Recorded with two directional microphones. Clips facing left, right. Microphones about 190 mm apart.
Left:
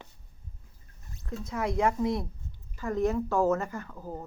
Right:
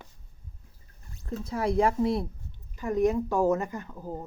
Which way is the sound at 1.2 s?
35° right (ahead or behind).